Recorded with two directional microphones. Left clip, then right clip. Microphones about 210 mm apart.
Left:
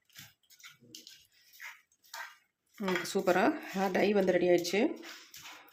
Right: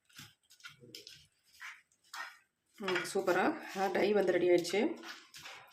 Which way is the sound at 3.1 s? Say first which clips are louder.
Left 4 dB; 30° left (ahead or behind).